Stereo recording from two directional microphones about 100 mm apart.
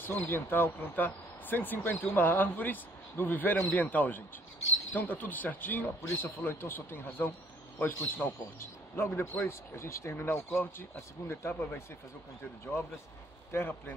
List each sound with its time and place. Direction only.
0.0 s a man's voice: 20° left (ahead or behind)
13.5 s speech: 20° left (ahead or behind)